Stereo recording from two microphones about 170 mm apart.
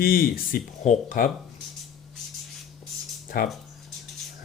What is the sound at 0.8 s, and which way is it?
Speech, 50° left (ahead or behind).